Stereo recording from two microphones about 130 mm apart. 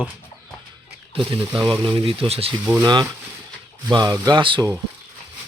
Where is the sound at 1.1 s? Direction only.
40° right (ahead or behind).